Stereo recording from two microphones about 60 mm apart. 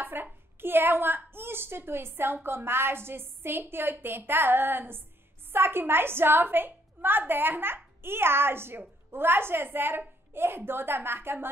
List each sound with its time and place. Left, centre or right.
0.0 s a woman's voice: right